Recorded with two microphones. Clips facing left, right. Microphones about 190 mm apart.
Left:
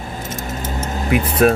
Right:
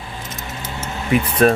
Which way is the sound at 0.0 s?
45° left (ahead or behind).